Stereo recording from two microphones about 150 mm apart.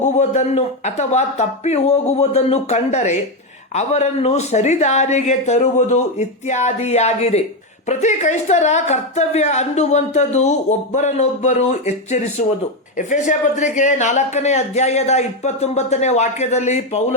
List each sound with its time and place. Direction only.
0.0 s a woman's voice: 50° left (ahead or behind)